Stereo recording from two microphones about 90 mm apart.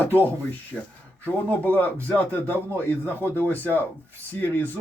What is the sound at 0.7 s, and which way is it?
Speech, 15° right (ahead or behind).